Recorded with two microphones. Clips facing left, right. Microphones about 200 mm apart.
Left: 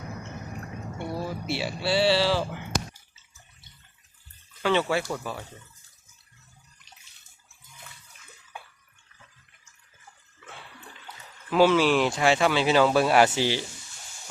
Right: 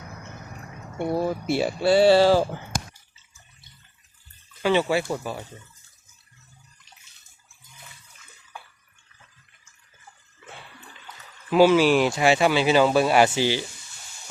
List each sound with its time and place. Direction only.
0.9 s speech: 50° right (ahead or behind)
4.6 s speech: 10° right (ahead or behind)
11.5 s speech: 5° right (ahead or behind)